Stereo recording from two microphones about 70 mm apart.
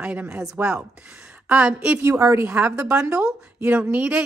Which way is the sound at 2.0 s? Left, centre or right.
Right.